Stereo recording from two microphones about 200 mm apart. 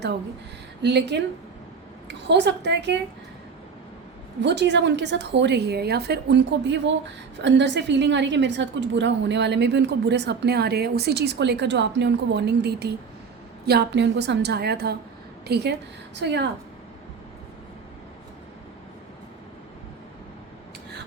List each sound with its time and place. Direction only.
0.8 s a woman's voice: 60° right (ahead or behind)
4.4 s a woman's voice: 60° right (ahead or behind)